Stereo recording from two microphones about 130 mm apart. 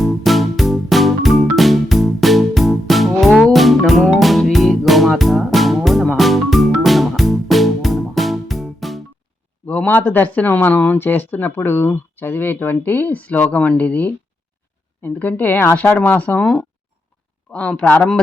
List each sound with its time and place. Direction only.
0.0 s music: centre (ahead or behind)
9.6 s speech: 10° left (ahead or behind)